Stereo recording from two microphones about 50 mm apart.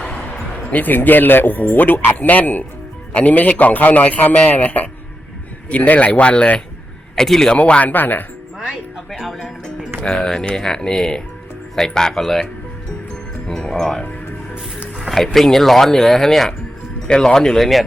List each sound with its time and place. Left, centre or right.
0.0 s music: left
0.7 s a man's voice: left
7.2 s speech: centre
7.6 s speech: left
8.5 s music: centre
9.0 s speech: centre
13.5 s speech: centre